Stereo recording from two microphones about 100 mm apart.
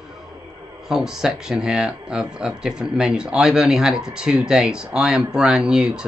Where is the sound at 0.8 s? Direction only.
5° right (ahead or behind).